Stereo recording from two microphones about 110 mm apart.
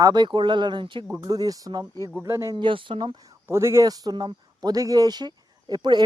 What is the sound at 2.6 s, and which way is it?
Speech, 50° right (ahead or behind).